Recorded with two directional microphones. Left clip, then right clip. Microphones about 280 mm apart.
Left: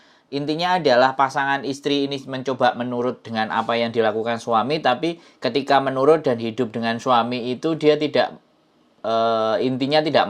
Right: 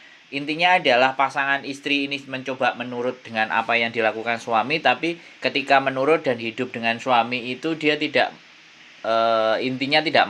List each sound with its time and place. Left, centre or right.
0.3 s speech: left